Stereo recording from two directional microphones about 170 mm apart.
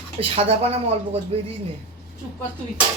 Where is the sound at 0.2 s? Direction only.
35° right (ahead or behind).